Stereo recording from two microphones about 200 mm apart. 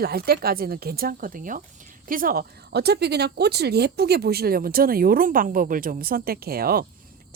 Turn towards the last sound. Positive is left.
turn(degrees=-50)  # may be behind; listen again after turning